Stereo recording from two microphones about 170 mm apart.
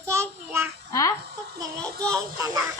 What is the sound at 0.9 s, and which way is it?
Speech, 20° left (ahead or behind).